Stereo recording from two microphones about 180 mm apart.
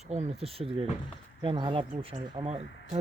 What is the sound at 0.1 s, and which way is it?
Speech, 35° right (ahead or behind).